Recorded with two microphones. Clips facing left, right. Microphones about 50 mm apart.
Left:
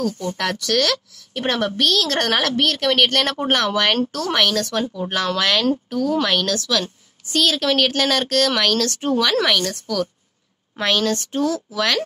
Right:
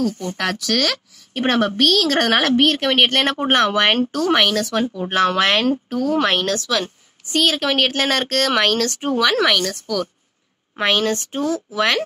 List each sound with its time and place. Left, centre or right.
0.4 s speech: centre
0.9 s a woman's voice: right; by 10.0 s centre
10.8 s a woman's voice: right